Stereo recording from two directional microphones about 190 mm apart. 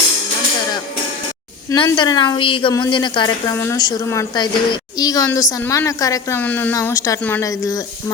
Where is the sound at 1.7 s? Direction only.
20° left (ahead or behind).